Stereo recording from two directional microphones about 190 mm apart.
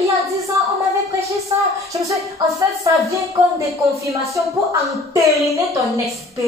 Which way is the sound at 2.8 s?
15° right (ahead or behind).